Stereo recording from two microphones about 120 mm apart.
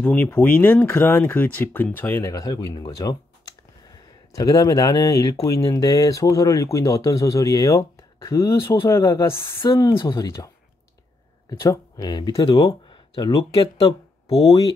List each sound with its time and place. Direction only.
0.0 s speech: 15° left (ahead or behind); by 10.5 s 30° left (ahead or behind)
11.6 s speech: 30° left (ahead or behind); by 14.4 s 50° left (ahead or behind)